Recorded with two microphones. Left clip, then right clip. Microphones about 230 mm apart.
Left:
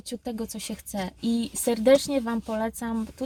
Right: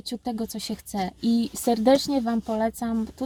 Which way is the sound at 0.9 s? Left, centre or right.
Centre.